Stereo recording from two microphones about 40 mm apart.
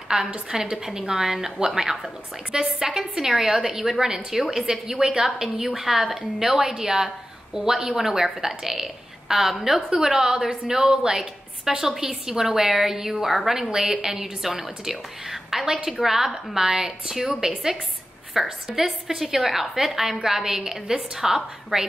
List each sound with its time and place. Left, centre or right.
0.1 s a woman's voice: centre
5.8 s a woman's voice: centre